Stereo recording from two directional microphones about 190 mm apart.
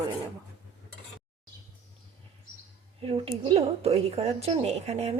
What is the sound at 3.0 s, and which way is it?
Speech, 30° right (ahead or behind).